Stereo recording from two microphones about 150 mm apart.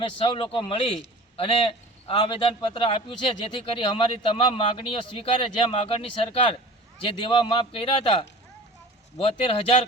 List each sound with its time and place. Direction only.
0.0 s a man's voice: 35° left (ahead or behind)